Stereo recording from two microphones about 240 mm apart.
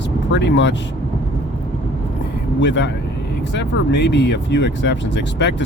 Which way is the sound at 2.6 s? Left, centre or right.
Left.